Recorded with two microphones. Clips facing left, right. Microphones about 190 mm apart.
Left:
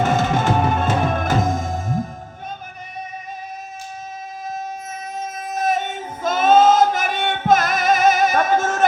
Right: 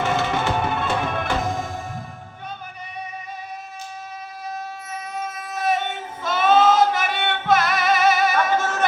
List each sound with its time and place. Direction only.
0.0 s music: 45° left (ahead or behind)
4.9 s child singing: 45° left (ahead or behind)